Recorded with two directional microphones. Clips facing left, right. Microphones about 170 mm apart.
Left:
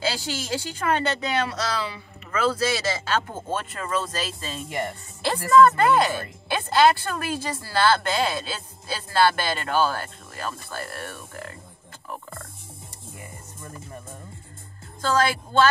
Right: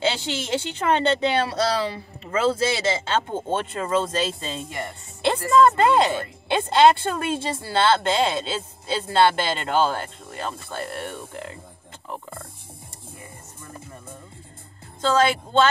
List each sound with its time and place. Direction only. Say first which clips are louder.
0.0 s speech: right 3 dB; 25° right (ahead or behind)
2.2 s speech: right 2 dB; 25° right (ahead or behind)
15.0 s speech: right 3 dB; 25° right (ahead or behind)